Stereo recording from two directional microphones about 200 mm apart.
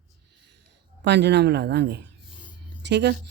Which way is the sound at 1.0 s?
60° right (ahead or behind).